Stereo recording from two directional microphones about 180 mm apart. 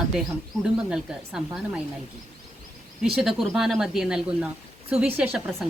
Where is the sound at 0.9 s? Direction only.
5° right (ahead or behind).